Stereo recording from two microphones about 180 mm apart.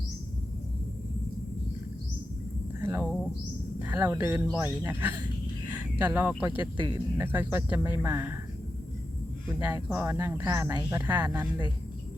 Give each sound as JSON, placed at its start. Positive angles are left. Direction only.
{"t": 2.8, "sound": "a sound", "side_deg": -15}
{"t": 3.8, "sound": "speech", "side_deg": -15}
{"t": 6.7, "sound": "speech", "side_deg": -25}
{"t": 7.3, "sound": "speech", "side_deg": -10}
{"t": 9.5, "sound": "speech", "side_deg": -10}
{"t": 10.8, "sound": "speech", "side_deg": -20}
{"t": 11.3, "sound": "speech", "side_deg": -10}